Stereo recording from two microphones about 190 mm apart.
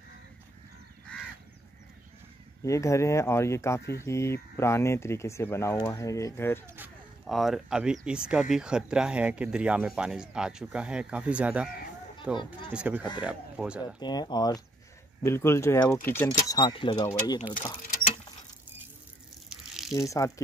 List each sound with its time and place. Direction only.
2.6 s speech: 15° left (ahead or behind)
7.2 s speech: centre (ahead or behind)
13.9 s speech: 20° left (ahead or behind)
19.5 s water: centre (ahead or behind)
20.0 s speech: 15° left (ahead or behind)